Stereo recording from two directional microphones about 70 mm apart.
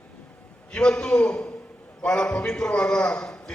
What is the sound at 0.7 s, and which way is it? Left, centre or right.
A man's voice, centre.